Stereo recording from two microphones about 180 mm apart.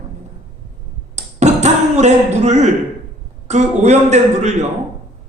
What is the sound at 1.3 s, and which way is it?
A man's voice, 40° right (ahead or behind).